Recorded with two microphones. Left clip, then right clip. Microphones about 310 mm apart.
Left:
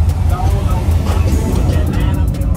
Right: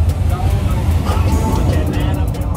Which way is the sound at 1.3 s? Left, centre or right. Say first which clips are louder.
Right 1 dB; centre.